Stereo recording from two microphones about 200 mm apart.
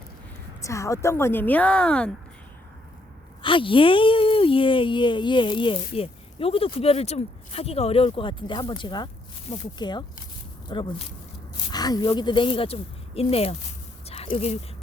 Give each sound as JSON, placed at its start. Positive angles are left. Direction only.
{"t": 0.6, "sound": "a woman's voice", "side_deg": 15}
{"t": 3.4, "sound": "speech", "side_deg": 25}
{"t": 14.1, "sound": "a sound", "side_deg": 30}